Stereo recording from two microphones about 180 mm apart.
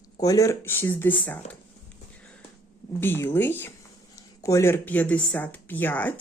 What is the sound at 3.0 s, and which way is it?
Speech, 10° left (ahead or behind).